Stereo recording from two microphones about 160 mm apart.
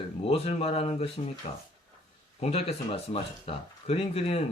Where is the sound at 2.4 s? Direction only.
40° left (ahead or behind).